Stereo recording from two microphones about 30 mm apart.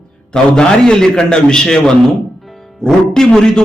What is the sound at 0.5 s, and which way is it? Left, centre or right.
A man's voice, left.